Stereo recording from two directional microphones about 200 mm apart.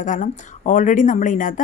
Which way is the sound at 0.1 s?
40° left (ahead or behind).